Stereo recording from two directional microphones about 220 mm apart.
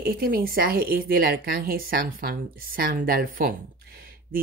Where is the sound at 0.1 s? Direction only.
40° right (ahead or behind).